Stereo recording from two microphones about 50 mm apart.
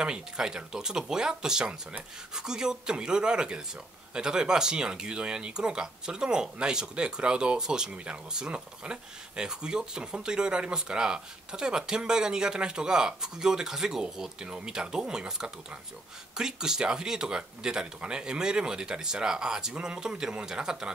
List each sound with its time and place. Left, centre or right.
0.0 s speech: centre